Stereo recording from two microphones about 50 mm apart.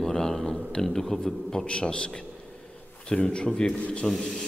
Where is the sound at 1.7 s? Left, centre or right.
Centre.